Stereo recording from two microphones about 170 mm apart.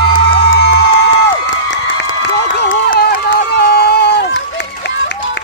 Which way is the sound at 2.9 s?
60° left (ahead or behind).